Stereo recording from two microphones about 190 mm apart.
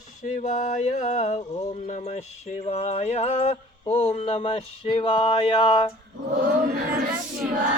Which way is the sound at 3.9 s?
35° left (ahead or behind).